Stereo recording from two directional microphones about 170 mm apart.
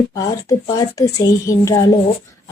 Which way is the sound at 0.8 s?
20° left (ahead or behind).